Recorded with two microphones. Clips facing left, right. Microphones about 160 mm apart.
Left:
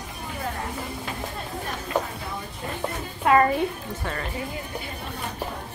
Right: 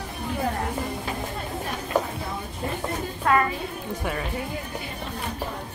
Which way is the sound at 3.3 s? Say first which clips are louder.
Left 3 dB; 20° left (ahead or behind).